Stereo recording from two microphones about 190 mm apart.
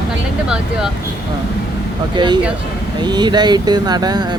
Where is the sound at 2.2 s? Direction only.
20° right (ahead or behind).